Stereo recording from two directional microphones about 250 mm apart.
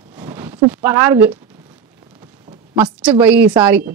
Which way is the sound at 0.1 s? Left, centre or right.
Centre.